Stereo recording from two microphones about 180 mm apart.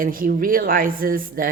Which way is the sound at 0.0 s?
50° right (ahead or behind).